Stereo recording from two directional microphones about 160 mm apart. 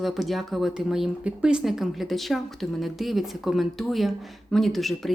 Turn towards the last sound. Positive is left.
turn(degrees=0)  # may be behind; listen again after turning